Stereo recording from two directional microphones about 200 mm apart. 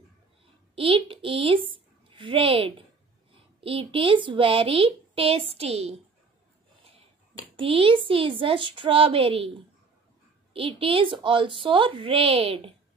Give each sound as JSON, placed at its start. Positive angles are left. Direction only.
{"t": 0.7, "sound": "a woman's voice", "side_deg": -30}
{"t": 7.5, "sound": "a woman's voice", "side_deg": -25}